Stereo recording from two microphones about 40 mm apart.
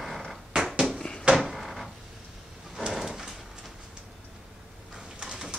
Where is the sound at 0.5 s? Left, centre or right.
Centre.